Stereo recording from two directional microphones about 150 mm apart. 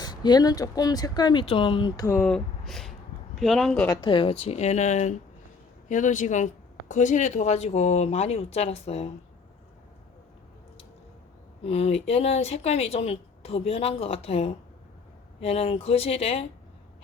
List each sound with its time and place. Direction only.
0.0 s speech: 30° left (ahead or behind)
2.1 s a sound: 5° left (ahead or behind)
3.3 s speech: centre (ahead or behind)
4.0 s speech: 35° left (ahead or behind)
11.6 s speech: 45° left (ahead or behind)